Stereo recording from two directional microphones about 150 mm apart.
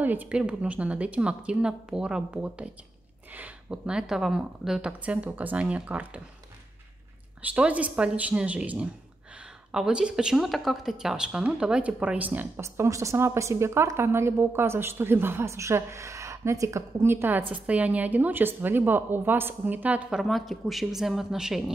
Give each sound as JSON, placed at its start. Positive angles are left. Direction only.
{"t": 0.0, "sound": "speech", "side_deg": -10}
{"t": 7.4, "sound": "speech", "side_deg": -10}